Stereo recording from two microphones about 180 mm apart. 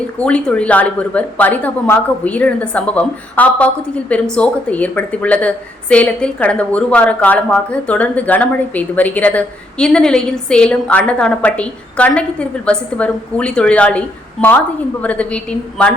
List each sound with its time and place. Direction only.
0.2 s a woman's voice: 5° left (ahead or behind)